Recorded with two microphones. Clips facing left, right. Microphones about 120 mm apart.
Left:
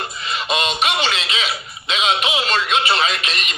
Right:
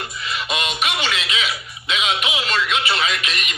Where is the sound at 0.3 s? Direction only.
30° left (ahead or behind).